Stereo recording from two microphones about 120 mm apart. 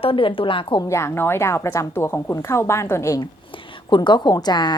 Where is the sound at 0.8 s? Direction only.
25° left (ahead or behind).